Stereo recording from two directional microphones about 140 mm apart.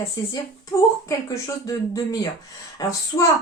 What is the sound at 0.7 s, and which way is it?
Speech, 25° left (ahead or behind).